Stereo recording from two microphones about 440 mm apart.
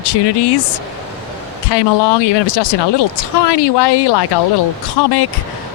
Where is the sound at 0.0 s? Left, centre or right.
Left.